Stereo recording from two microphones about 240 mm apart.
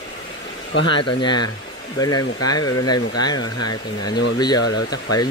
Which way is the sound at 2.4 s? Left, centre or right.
Centre.